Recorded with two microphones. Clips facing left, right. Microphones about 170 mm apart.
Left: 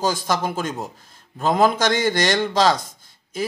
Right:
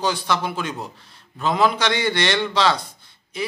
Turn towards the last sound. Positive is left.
turn(degrees=45)  # may be behind; listen again after turning